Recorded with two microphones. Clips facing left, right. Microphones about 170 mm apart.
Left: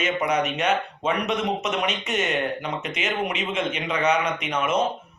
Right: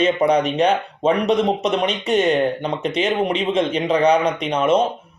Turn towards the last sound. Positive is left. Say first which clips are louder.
# right 7 dB
turn(degrees=-30)  # may be behind; listen again after turning